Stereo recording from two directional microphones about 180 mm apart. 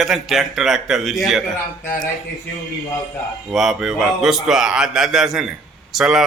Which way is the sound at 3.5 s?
Centre (ahead or behind).